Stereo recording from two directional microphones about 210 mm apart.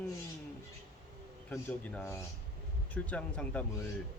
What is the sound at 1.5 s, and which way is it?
Speech, 10° left (ahead or behind).